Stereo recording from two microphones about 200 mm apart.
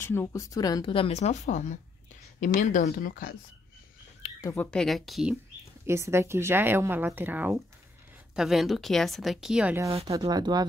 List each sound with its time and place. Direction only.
0.0 s speech: 10° left (ahead or behind); by 3.3 s 45° left (ahead or behind)
4.4 s a woman's voice: 10° left (ahead or behind)
5.9 s a woman's voice: 15° right (ahead or behind)
10.2 s speech: 20° right (ahead or behind)